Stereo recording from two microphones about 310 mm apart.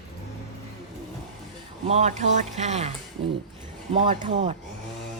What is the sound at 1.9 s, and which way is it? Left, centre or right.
Speech, right.